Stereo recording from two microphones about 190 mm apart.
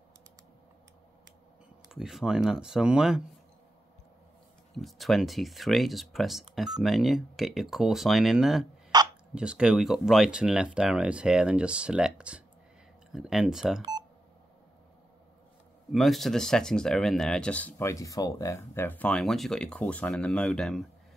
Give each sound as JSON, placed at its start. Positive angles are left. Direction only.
{"t": 1.9, "sound": "speech", "side_deg": 0}
{"t": 4.7, "sound": "speech", "side_deg": 0}
{"t": 8.9, "sound": "a sound", "side_deg": -20}
{"t": 9.3, "sound": "speech", "side_deg": -5}
{"t": 15.9, "sound": "speech", "side_deg": 0}